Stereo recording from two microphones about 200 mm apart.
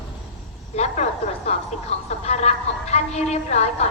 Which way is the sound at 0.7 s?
30° left (ahead or behind).